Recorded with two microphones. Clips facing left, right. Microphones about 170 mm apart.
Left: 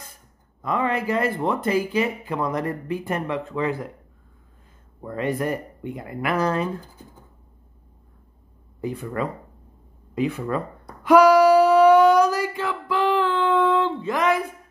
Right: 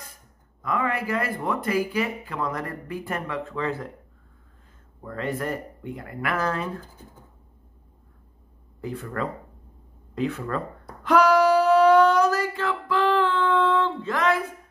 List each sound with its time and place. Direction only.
0.6 s speech: 25° left (ahead or behind)
5.0 s speech: 15° left (ahead or behind)
8.8 s speech: 15° left (ahead or behind)
11.1 s a sound: 10° left (ahead or behind)